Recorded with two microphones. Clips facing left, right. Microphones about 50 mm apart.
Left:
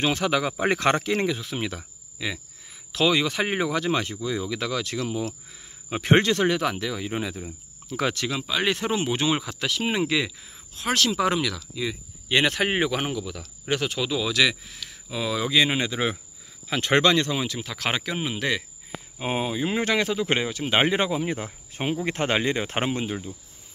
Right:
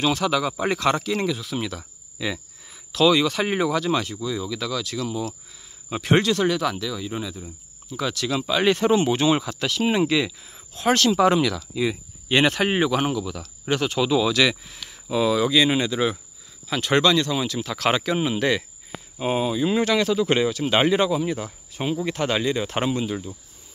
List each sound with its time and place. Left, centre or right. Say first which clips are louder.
0.0 s speech: right 2 dB; left
2.1 s speech: right 3 dB; centre
2.9 s speech: right 4 dB; centre; by 8.2 s left
8.3 s speech: right 5 dB; centre
12.6 s speech: right 3 dB; centre
14.9 s a sound: right 7 dB; centre
15.4 s speech: right 3 dB; centre
17.4 s speech: right 4 dB; centre
19.1 s speech: right 4 dB; centre; by 23.1 s left